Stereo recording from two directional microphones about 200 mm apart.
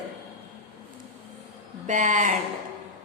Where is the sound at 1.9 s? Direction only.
40° right (ahead or behind).